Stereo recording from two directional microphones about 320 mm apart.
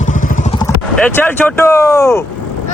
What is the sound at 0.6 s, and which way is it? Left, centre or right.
Speech, centre.